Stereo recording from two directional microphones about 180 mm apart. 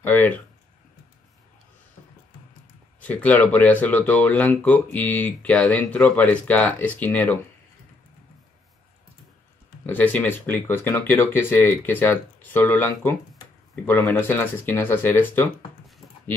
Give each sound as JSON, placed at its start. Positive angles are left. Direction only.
{"t": 0.0, "sound": "speech", "side_deg": 10}
{"t": 3.0, "sound": "speech", "side_deg": 10}
{"t": 9.8, "sound": "speech", "side_deg": 10}